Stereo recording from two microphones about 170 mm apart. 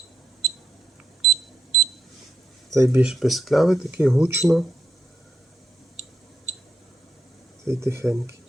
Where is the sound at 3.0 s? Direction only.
Centre (ahead or behind).